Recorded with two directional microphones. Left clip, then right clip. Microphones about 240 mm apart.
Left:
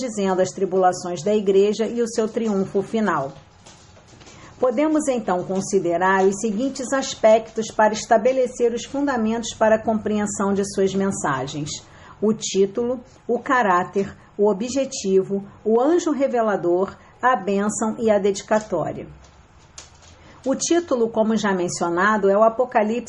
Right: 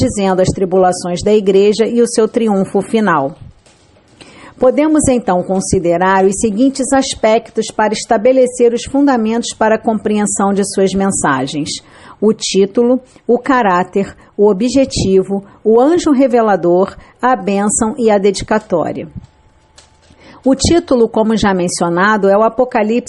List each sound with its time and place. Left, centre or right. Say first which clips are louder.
0.0 s a woman's voice: right 8 dB; right
4.6 s a woman's voice: right 9 dB; right
20.5 s a woman's voice: right 9 dB; right